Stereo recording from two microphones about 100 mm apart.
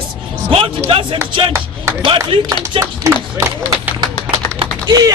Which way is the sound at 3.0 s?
30° right (ahead or behind).